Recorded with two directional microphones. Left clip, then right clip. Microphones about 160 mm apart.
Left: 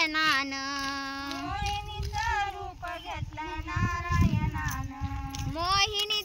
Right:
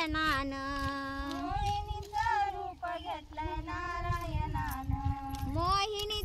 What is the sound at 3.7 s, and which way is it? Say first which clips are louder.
Child singing: left 7 dB; 5° right (ahead or behind).